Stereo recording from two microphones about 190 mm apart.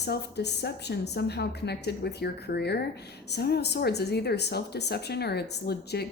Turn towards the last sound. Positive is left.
turn(degrees=60)  # may be behind; listen again after turning